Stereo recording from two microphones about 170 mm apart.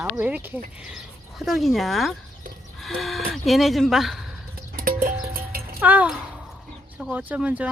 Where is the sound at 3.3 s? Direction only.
Centre (ahead or behind).